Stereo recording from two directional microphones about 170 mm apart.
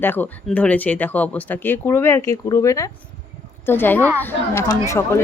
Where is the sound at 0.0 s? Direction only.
10° left (ahead or behind).